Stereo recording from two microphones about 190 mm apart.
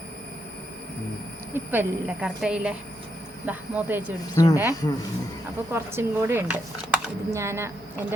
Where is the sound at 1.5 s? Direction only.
10° right (ahead or behind).